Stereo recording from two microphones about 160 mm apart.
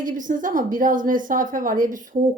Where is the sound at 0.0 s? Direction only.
55° right (ahead or behind).